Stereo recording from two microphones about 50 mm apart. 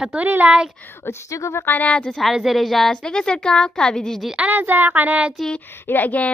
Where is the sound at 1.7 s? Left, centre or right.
Left.